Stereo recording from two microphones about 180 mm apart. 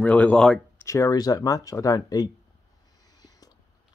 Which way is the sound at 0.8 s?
15° left (ahead or behind).